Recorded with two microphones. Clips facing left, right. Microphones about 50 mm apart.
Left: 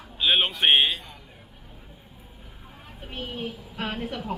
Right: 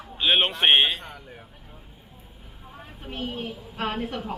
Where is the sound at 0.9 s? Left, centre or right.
Right.